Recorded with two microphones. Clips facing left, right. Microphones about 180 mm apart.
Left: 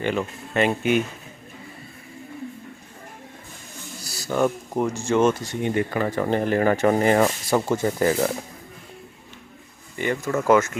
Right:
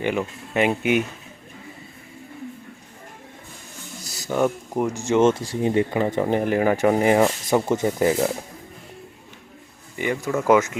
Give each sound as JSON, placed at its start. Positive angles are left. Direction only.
{"t": 0.0, "sound": "speech", "side_deg": -15}
{"t": 4.1, "sound": "a sound", "side_deg": -15}
{"t": 4.4, "sound": "speech", "side_deg": -5}
{"t": 4.9, "sound": "speech", "side_deg": -20}
{"t": 5.9, "sound": "speech", "side_deg": -20}
{"t": 10.0, "sound": "speech", "side_deg": -10}